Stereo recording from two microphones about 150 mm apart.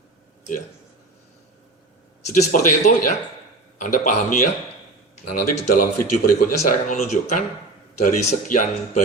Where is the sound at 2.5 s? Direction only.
60° left (ahead or behind).